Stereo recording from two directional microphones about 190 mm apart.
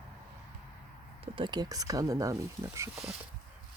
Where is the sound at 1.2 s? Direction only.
25° right (ahead or behind).